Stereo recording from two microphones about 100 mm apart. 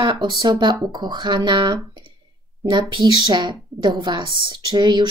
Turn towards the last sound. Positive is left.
turn(degrees=-45)  # may be behind; listen again after turning